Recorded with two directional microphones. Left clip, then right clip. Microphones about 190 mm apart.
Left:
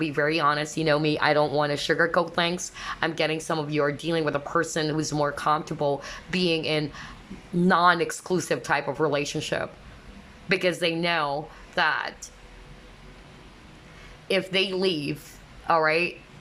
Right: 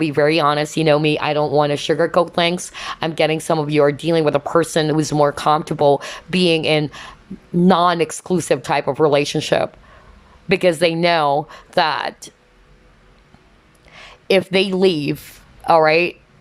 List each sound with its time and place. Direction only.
0.0 s speech: 25° right (ahead or behind)
14.0 s a woman's voice: 20° right (ahead or behind)